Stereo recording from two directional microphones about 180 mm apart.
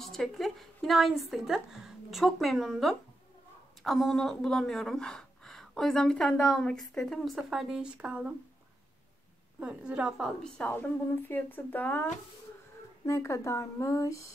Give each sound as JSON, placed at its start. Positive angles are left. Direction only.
{"t": 0.0, "sound": "speech", "side_deg": 0}
{"t": 9.6, "sound": "a woman's voice", "side_deg": -5}